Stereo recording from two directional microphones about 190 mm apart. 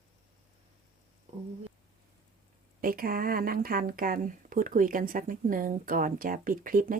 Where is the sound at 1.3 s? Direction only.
35° right (ahead or behind).